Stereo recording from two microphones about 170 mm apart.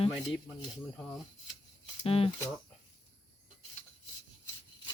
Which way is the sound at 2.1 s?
35° left (ahead or behind).